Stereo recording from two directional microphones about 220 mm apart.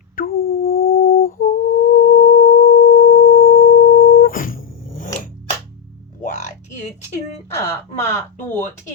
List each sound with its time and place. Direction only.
0.2 s humming: 40° left (ahead or behind)
6.2 s music: 35° left (ahead or behind)
7.7 s speech: 10° left (ahead or behind)